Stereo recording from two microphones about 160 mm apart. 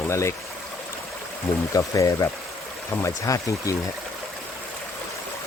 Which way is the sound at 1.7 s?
20° left (ahead or behind).